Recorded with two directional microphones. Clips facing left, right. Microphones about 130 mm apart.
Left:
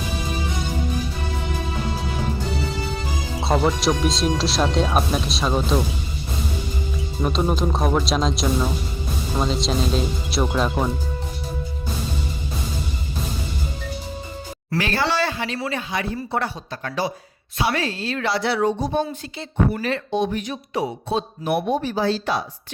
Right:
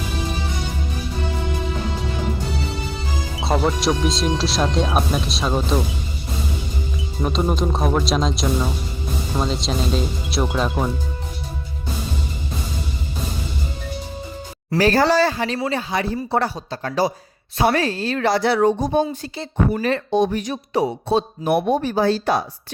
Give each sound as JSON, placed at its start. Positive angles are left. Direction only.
{"t": 3.4, "sound": "speech", "side_deg": 0}
{"t": 7.2, "sound": "speech", "side_deg": 0}
{"t": 14.8, "sound": "speech", "side_deg": -40}